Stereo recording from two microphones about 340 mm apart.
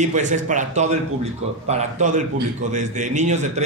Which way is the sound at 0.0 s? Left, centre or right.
Right.